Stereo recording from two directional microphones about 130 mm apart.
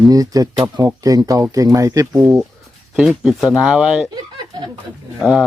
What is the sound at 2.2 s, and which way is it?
Speech, 15° right (ahead or behind).